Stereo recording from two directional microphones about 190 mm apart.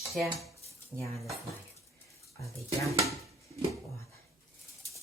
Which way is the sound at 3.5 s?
15° left (ahead or behind).